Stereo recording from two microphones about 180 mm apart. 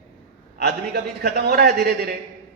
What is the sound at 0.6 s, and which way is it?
A man's voice, 65° right (ahead or behind).